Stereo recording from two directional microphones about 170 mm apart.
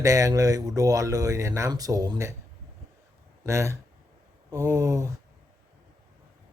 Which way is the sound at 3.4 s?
15° right (ahead or behind).